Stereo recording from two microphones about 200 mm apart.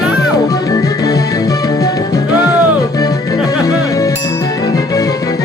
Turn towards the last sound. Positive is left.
turn(degrees=15)  # may be behind; listen again after turning